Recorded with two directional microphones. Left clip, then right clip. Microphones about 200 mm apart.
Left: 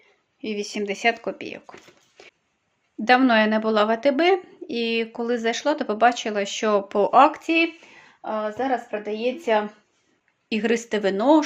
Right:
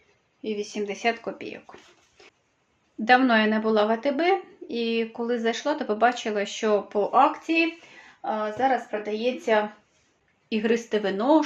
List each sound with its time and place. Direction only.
0.4 s speech: 45° left (ahead or behind); by 1.7 s 30° left (ahead or behind)
3.0 s speech: 25° left (ahead or behind); by 7.6 s 50° left (ahead or behind)
8.2 s speech: 35° left (ahead or behind)